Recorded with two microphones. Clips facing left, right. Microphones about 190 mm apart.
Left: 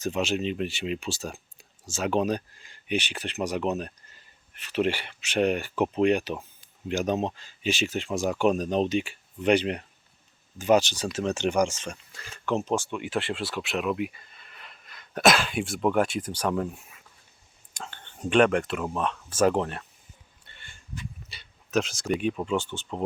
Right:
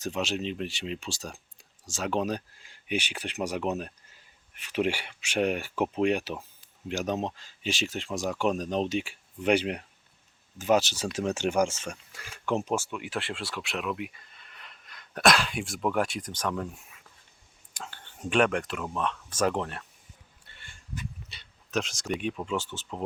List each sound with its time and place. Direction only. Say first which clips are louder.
0.0 s speech: left 4 dB; centre (ahead or behind)
16.3 s speech: left 4 dB; 35° left (ahead or behind)
17.7 s speech: left 2 dB; 5° right (ahead or behind)
21.0 s dog: even; 5° left (ahead or behind)
22.4 s speech: left 4 dB; centre (ahead or behind)